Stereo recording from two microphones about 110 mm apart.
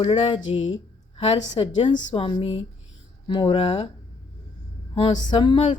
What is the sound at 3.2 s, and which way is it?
Speech, 45° left (ahead or behind).